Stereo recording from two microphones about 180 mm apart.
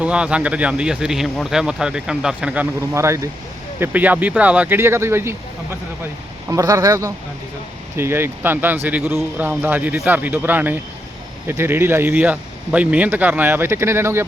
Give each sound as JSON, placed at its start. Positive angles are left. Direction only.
{"t": 0.0, "sound": "speech", "side_deg": -5}
{"t": 6.5, "sound": "speech", "side_deg": -20}